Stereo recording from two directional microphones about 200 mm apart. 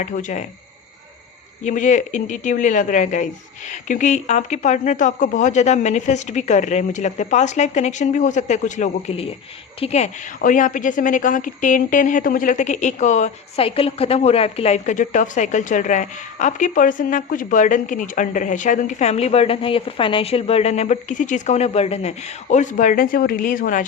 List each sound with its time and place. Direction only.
0.0 s a woman's voice: 40° left (ahead or behind)
1.6 s a woman's voice: 40° left (ahead or behind)